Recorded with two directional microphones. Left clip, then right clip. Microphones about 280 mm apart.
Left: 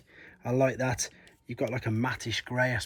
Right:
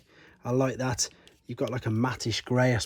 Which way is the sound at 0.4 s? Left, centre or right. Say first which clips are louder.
Left 1 dB; centre.